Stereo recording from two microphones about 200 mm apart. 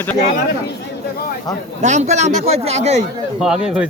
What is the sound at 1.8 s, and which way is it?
Speech, 35° right (ahead or behind).